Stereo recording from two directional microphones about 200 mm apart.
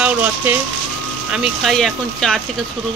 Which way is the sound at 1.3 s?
Centre (ahead or behind).